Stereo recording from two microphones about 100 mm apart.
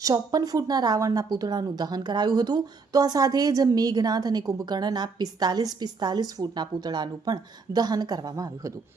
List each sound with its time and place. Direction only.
0.0 s a woman's voice: 40° right (ahead or behind)